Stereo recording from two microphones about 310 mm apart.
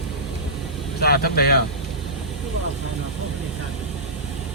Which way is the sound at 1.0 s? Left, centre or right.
Left.